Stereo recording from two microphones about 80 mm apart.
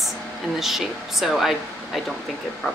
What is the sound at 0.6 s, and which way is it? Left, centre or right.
Speech, centre.